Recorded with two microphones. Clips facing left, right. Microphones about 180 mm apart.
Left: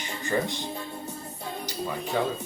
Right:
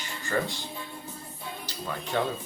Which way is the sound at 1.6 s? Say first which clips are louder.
Left 4 dB; 10° left (ahead or behind).